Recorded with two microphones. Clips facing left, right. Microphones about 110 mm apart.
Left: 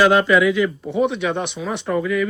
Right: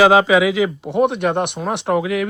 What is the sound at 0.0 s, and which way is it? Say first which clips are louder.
Speech: right 2 dB; 90° right.